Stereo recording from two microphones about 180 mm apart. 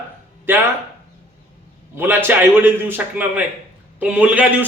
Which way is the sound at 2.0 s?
10° right (ahead or behind).